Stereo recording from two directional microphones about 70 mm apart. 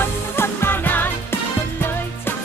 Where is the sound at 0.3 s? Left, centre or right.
Left.